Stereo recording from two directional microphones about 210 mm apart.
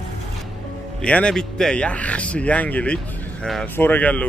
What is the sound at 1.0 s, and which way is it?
Speech, 5° left (ahead or behind).